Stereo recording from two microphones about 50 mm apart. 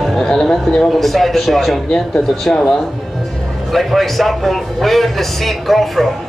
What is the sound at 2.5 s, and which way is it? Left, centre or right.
Speech, centre.